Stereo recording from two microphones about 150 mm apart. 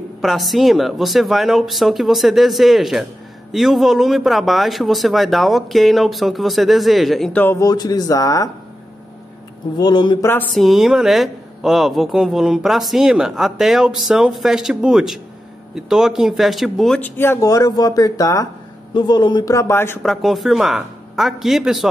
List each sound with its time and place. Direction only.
0.2 s a woman's voice: centre (ahead or behind)
7.4 s speech: 20° left (ahead or behind)
9.8 s speech: 30° left (ahead or behind)
10.5 s a woman's voice: centre (ahead or behind)
17.0 s speech: 15° left (ahead or behind)
20.0 s a woman's voice: centre (ahead or behind)